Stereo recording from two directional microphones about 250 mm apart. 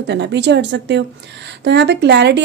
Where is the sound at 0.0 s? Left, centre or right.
Right.